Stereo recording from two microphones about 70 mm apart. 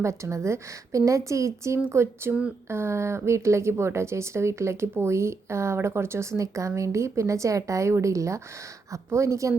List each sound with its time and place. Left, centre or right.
0.0 s a woman's voice: right